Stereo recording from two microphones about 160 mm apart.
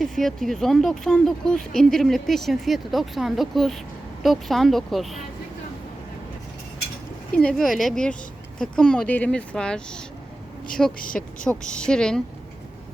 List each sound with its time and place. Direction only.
0.0 s speech: centre (ahead or behind)
7.3 s speech: 5° left (ahead or behind)
11.0 s speech: 60° left (ahead or behind)
11.7 s speech: 5° left (ahead or behind)